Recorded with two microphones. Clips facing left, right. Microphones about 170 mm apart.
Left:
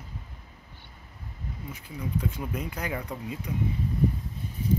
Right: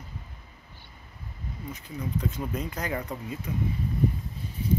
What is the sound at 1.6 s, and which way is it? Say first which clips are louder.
Speech: right 2 dB; 10° left (ahead or behind).